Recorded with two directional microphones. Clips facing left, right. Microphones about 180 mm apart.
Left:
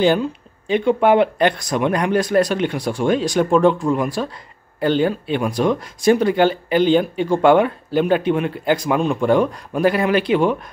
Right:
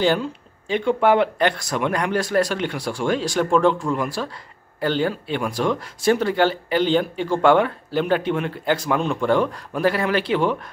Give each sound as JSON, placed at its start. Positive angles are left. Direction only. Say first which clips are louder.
{"t": 0.0, "sound": "speech", "louder": "left 4 dB", "side_deg": 15}